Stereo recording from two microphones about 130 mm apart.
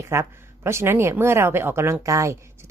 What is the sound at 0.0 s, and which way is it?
A woman's voice, 20° right (ahead or behind).